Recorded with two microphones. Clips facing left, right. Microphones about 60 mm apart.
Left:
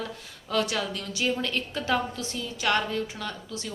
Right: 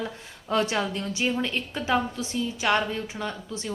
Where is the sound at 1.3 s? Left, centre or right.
Centre.